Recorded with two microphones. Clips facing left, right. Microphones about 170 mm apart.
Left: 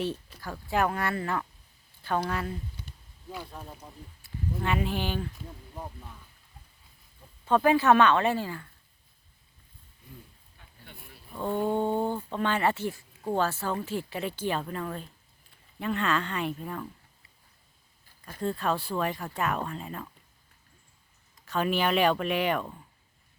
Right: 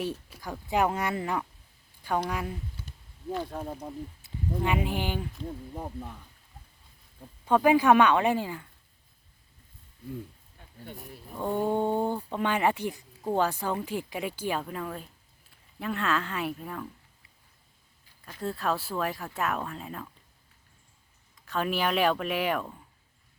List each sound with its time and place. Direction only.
0.0 s speech: 10° right (ahead or behind)
3.3 s speech: 45° right (ahead or behind)
4.2 s a sound: 20° right (ahead or behind)
4.6 s speech: 15° right (ahead or behind)
7.4 s speech: 10° right (ahead or behind)
10.6 s a sound: 40° right (ahead or behind)
11.3 s speech: 15° right (ahead or behind)
18.3 s speech: centre (ahead or behind)
21.5 s speech: centre (ahead or behind)